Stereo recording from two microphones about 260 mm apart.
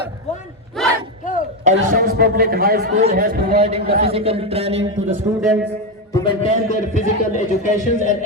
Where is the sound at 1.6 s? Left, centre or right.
Right.